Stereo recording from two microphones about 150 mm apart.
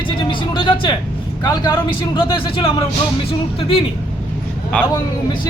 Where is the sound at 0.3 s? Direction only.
35° left (ahead or behind).